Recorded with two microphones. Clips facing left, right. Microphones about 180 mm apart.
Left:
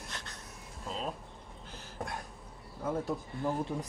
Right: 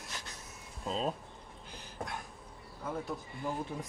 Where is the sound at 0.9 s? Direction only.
30° right (ahead or behind).